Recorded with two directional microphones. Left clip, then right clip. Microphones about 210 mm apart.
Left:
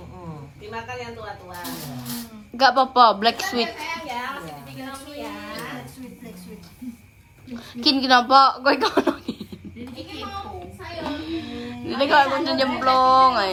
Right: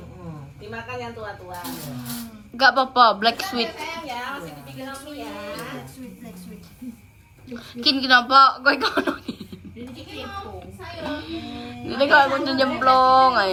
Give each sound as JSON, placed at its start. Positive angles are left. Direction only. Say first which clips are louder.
{"t": 0.7, "sound": "a woman's voice", "louder": "even", "side_deg": 0}
{"t": 2.6, "sound": "a woman's voice", "louder": "even", "side_deg": 15}
{"t": 7.5, "sound": "a woman's voice", "louder": "even", "side_deg": 20}
{"t": 11.1, "sound": "speech", "louder": "left 1 dB", "side_deg": 15}